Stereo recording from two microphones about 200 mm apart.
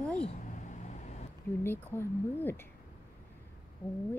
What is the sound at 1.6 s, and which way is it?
Speech, 10° left (ahead or behind).